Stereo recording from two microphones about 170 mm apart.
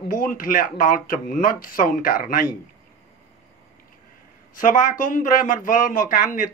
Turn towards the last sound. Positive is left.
turn(degrees=50)  # may be behind; listen again after turning